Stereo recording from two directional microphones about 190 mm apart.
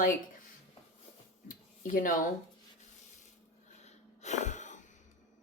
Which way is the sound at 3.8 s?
40° left (ahead or behind).